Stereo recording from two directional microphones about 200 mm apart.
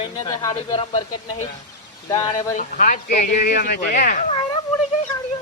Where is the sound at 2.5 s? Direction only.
40° left (ahead or behind).